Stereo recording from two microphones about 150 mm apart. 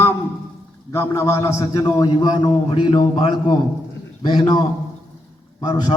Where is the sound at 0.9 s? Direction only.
20° left (ahead or behind).